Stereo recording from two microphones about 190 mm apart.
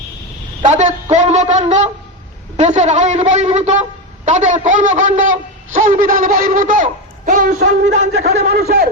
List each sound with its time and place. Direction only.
0.6 s a man's voice: 40° right (ahead or behind)
8.1 s speech: 60° right (ahead or behind)